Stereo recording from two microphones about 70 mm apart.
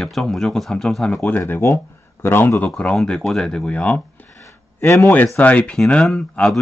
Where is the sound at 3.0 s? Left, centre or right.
Centre.